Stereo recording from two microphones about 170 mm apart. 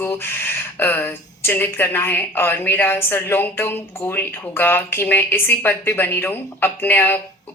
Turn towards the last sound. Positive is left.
turn(degrees=10)  # may be behind; listen again after turning